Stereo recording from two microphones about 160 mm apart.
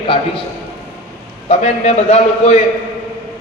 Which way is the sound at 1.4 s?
40° left (ahead or behind).